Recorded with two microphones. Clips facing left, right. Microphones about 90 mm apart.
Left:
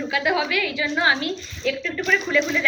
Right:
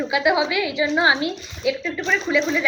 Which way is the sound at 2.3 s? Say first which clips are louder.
Right 4 dB; 10° right (ahead or behind).